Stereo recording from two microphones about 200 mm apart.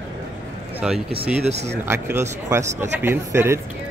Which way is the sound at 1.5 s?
35° right (ahead or behind).